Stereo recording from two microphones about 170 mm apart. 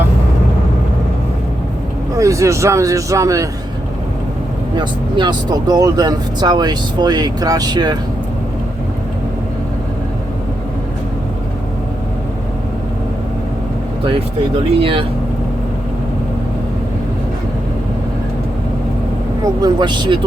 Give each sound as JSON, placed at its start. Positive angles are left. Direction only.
{"t": 2.1, "sound": "speech", "side_deg": -20}
{"t": 4.8, "sound": "speech", "side_deg": -25}
{"t": 14.8, "sound": "speech", "side_deg": -30}
{"t": 19.6, "sound": "speech", "side_deg": -25}